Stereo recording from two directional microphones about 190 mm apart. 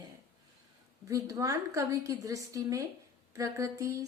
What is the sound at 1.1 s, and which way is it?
A woman's voice, 15° right (ahead or behind).